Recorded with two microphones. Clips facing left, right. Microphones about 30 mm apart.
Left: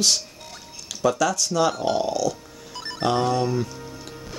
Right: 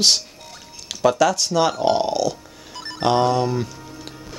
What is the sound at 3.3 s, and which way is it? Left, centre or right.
Speech, centre.